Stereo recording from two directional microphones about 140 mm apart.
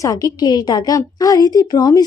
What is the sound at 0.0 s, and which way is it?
A woman's voice, 25° left (ahead or behind).